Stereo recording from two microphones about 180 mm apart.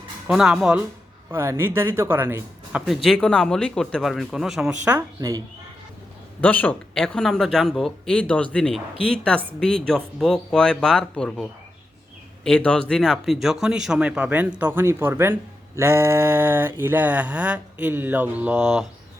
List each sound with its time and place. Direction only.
0.3 s speech: 5° right (ahead or behind)
2.8 s speech: centre (ahead or behind)
4.9 s speech: 15° right (ahead or behind)
6.4 s speech: 10° left (ahead or behind)
12.5 s speech: 5° left (ahead or behind)